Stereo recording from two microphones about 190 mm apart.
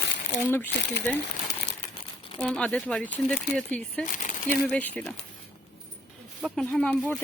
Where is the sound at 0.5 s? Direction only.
10° left (ahead or behind).